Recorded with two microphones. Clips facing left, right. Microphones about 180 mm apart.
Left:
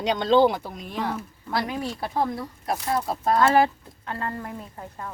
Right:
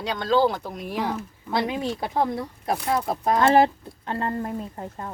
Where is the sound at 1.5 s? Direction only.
20° right (ahead or behind).